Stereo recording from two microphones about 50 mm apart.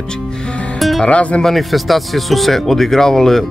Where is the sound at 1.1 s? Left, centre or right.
Left.